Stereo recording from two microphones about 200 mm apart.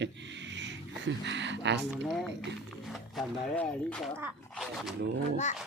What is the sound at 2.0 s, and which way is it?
Speech, centre (ahead or behind).